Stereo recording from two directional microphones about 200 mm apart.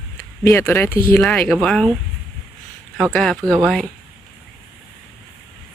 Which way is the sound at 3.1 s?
Centre (ahead or behind).